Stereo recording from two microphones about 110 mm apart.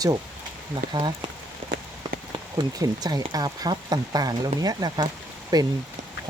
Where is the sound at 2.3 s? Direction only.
40° right (ahead or behind).